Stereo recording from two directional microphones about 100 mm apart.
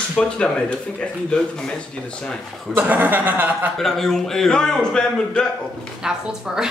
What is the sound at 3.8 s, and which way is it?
Speech, 5° left (ahead or behind).